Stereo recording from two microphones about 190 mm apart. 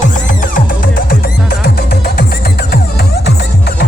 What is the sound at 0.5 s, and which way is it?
Music, 50° left (ahead or behind).